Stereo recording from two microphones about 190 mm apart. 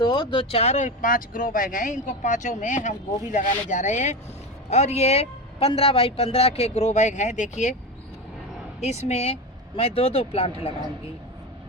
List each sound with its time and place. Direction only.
0.0 s speech: 25° left (ahead or behind)
8.8 s speech: 35° left (ahead or behind)